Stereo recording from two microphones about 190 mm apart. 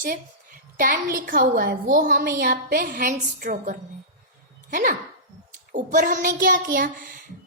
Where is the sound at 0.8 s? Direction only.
45° right (ahead or behind).